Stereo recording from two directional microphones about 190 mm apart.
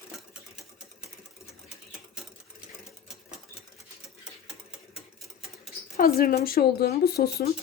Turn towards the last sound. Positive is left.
turn(degrees=55)  # may be behind; listen again after turning